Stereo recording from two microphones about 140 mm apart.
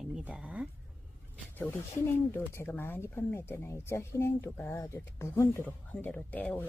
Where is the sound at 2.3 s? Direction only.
15° left (ahead or behind).